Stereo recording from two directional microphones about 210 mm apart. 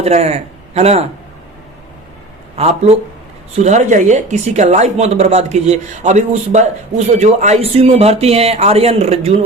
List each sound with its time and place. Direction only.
0.0 s speech: 30° right (ahead or behind)
2.6 s a man's voice: 30° right (ahead or behind)